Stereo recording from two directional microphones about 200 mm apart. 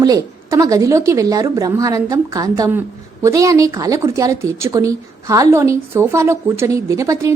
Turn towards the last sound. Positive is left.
turn(degrees=-15)  # may be behind; listen again after turning